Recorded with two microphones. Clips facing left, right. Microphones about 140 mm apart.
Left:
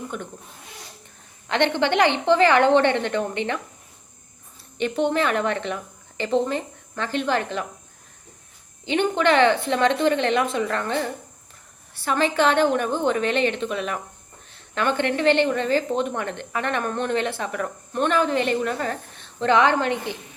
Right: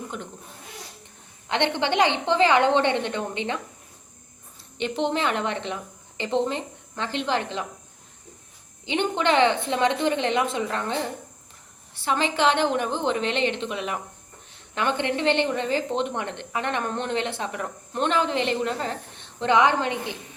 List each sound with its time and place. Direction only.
1.5 s a woman's voice: 20° right (ahead or behind)
4.8 s a woman's voice: 20° right (ahead or behind)
8.9 s a woman's voice: 20° right (ahead or behind)